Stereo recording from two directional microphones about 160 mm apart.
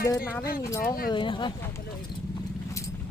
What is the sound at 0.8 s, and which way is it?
Speech, 65° left (ahead or behind).